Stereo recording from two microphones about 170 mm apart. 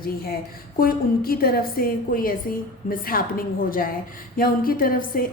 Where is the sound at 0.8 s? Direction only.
60° left (ahead or behind).